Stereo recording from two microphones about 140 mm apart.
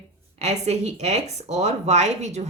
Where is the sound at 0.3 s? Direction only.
50° right (ahead or behind).